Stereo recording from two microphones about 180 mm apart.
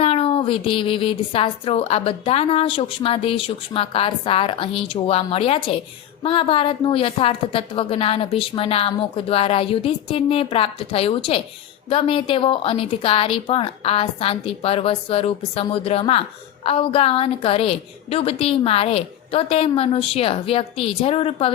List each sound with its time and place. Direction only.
0.0 s speech: 35° left (ahead or behind)